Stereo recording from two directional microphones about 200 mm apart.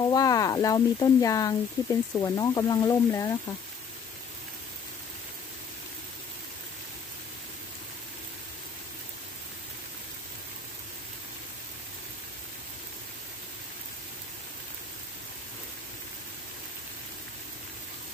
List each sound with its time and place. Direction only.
0.1 s speech: 20° left (ahead or behind)